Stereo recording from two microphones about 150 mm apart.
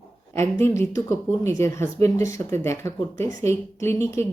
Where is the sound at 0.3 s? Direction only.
15° left (ahead or behind).